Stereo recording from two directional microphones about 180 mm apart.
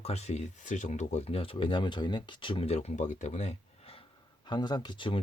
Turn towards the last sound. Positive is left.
turn(degrees=25)  # may be behind; listen again after turning